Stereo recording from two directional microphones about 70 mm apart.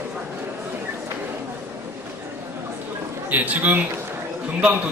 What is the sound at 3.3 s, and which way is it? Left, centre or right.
Speech, right.